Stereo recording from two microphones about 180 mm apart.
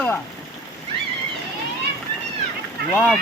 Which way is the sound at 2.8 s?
60° right (ahead or behind).